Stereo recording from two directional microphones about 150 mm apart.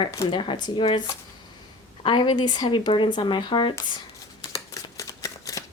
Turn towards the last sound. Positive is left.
turn(degrees=25)  # may be behind; listen again after turning